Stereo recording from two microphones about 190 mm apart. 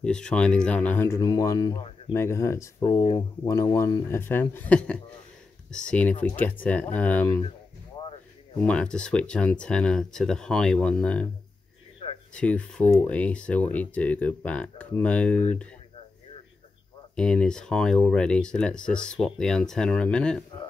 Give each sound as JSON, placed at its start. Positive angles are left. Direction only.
{"t": 0.0, "sound": "speech", "side_deg": 5}
{"t": 8.0, "sound": "a sound", "side_deg": 25}
{"t": 8.6, "sound": "speech", "side_deg": 5}
{"t": 12.4, "sound": "speech", "side_deg": 5}
{"t": 17.1, "sound": "speech", "side_deg": 5}